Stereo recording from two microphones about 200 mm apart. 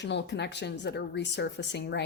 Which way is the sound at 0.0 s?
60° left (ahead or behind).